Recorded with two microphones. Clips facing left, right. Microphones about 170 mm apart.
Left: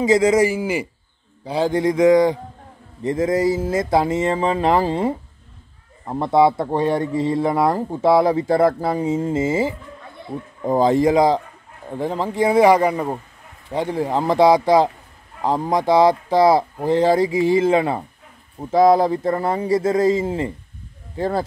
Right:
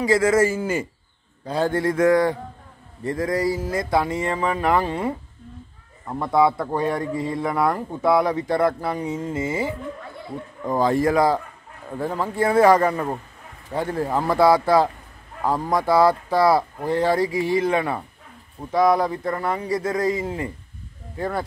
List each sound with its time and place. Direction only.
0.0 s speech: 20° left (ahead or behind)